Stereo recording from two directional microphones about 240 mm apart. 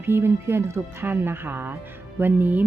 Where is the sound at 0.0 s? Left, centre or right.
Centre.